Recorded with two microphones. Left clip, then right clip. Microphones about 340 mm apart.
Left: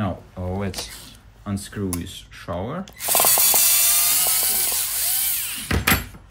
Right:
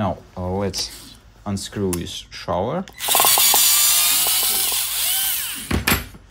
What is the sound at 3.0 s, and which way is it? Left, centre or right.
Mechanisms, centre.